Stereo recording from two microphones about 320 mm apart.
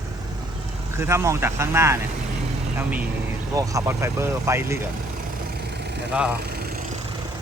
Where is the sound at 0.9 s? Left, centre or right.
Centre.